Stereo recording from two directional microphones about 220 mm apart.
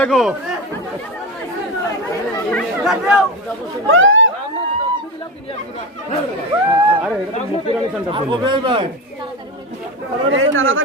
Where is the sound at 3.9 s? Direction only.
60° right (ahead or behind).